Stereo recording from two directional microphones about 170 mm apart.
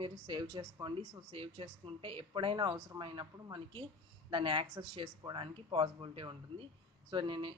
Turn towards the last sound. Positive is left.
turn(degrees=-30)  # may be behind; listen again after turning